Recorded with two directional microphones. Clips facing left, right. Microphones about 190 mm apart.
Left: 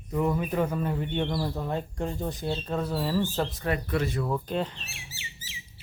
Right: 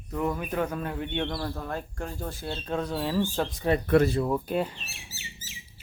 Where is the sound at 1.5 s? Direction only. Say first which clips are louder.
Left 3 dB; 20° left (ahead or behind).